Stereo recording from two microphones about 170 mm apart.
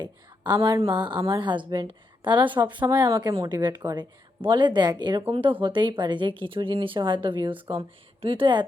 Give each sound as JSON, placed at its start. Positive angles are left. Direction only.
{"t": 0.0, "sound": "a woman's voice", "side_deg": -25}